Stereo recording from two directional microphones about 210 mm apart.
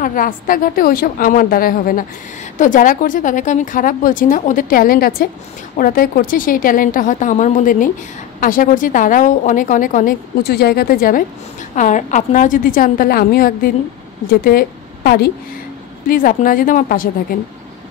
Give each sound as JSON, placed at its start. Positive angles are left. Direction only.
{"t": 0.0, "sound": "a woman's voice", "side_deg": 40}